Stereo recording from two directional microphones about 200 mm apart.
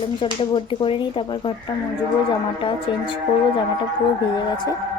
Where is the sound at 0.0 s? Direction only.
25° left (ahead or behind).